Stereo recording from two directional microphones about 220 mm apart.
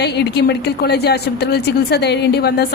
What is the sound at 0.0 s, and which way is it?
A woman's voice, 50° left (ahead or behind).